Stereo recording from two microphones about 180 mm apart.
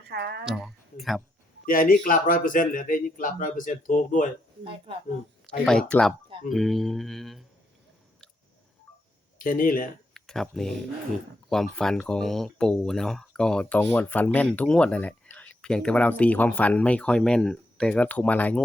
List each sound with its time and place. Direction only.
0.1 s a woman's voice: 65° right (ahead or behind)
0.4 s speech: centre (ahead or behind)
1.6 s speech: 50° left (ahead or behind)
5.6 s speech: 5° left (ahead or behind)
9.4 s speech: 50° left (ahead or behind)
10.2 s speech: centre (ahead or behind)